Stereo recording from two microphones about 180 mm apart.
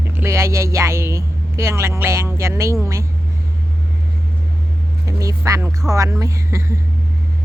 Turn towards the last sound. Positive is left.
turn(degrees=-15)  # may be behind; listen again after turning